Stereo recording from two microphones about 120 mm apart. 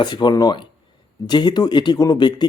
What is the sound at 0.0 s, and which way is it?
Speech, 40° left (ahead or behind).